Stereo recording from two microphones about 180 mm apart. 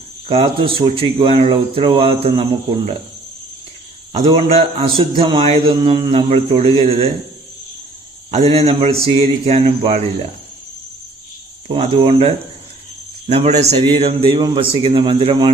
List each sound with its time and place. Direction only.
0.3 s speech: 30° right (ahead or behind)
4.3 s speech: 25° right (ahead or behind)
8.3 s speech: 40° right (ahead or behind)
11.7 s speech: 35° right (ahead or behind)